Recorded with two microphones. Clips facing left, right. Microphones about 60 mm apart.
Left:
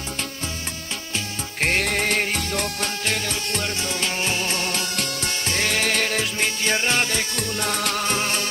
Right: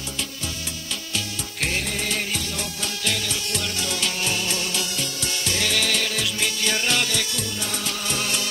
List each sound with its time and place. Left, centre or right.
1.1 s music: left
1.8 s music: left